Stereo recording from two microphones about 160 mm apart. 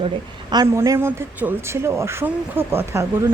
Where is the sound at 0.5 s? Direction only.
20° right (ahead or behind).